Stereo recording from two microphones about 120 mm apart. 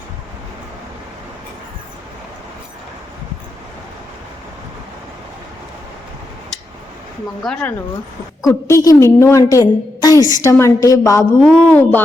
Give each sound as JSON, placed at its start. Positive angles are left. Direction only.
{"t": 7.4, "sound": "speech", "side_deg": 0}
{"t": 8.4, "sound": "a woman's voice", "side_deg": 25}
{"t": 11.4, "sound": "a woman's voice", "side_deg": 15}